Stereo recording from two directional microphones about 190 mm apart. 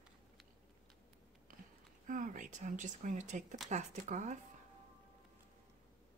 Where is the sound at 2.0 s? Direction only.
40° right (ahead or behind).